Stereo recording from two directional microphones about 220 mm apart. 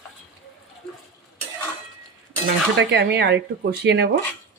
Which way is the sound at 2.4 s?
50° right (ahead or behind).